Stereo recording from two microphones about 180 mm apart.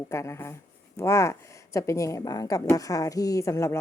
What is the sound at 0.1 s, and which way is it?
Speech, 15° left (ahead or behind).